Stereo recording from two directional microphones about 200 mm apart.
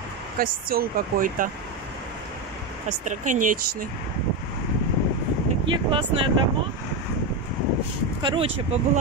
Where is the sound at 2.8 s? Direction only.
40° right (ahead or behind).